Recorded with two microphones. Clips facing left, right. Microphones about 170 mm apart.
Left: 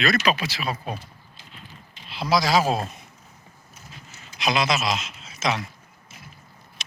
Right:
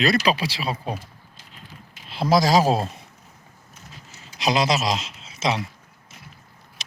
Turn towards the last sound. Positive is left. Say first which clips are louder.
# right 2 dB
turn(degrees=-30)  # may be behind; listen again after turning